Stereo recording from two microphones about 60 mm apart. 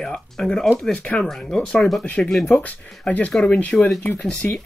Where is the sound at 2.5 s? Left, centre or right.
Left.